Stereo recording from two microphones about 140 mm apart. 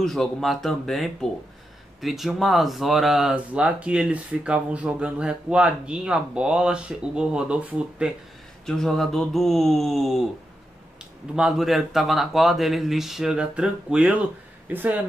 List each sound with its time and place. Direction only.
0.0 s speech: centre (ahead or behind)
8.6 s speech: centre (ahead or behind)
11.3 s speech: centre (ahead or behind)